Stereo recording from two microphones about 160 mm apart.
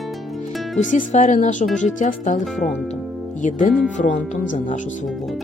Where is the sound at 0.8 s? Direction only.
50° left (ahead or behind).